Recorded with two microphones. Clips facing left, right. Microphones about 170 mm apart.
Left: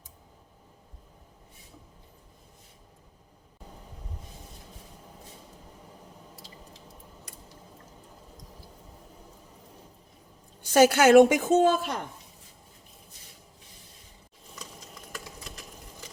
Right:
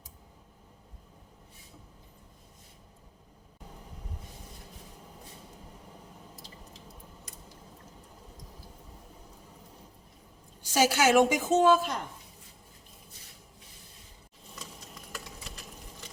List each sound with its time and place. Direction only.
10.7 s a woman's voice: 55° left (ahead or behind)